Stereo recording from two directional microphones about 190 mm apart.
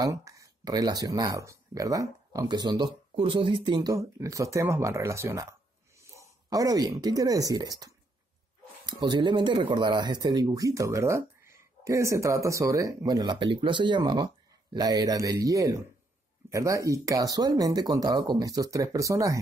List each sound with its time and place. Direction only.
0.0 s speech: 15° right (ahead or behind)
8.8 s speech: 20° right (ahead or behind)